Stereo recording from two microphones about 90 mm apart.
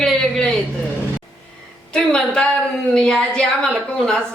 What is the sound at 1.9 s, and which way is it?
A woman's voice, 10° left (ahead or behind).